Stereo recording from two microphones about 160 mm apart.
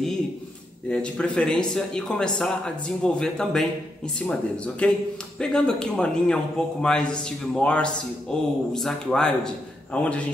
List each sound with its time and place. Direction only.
0.8 s a man's voice: 5° left (ahead or behind)